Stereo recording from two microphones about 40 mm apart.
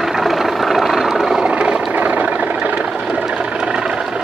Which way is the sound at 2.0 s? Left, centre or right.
Right.